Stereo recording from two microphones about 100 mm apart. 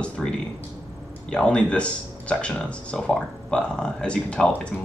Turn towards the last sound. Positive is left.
turn(degrees=10)  # may be behind; listen again after turning